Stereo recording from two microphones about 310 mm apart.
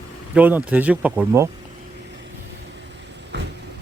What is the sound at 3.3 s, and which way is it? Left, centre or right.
Vehicle, right.